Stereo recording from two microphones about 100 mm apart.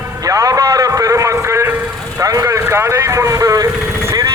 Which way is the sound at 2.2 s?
35° right (ahead or behind).